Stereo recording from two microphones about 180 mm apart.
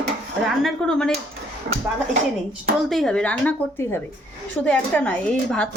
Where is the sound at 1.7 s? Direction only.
55° right (ahead or behind).